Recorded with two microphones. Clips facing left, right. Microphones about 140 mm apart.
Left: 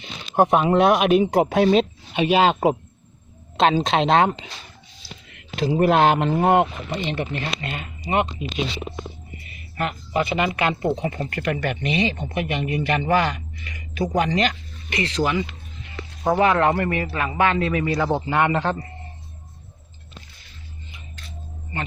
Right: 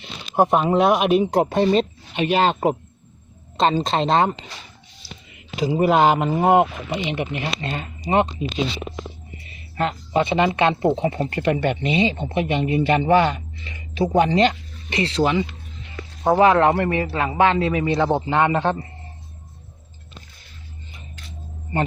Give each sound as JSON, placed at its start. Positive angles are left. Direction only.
{"t": 0.0, "sound": "speech", "side_deg": 0}
{"t": 5.5, "sound": "speech", "side_deg": -10}
{"t": 7.6, "sound": "speech", "side_deg": -30}
{"t": 9.5, "sound": "speech", "side_deg": -25}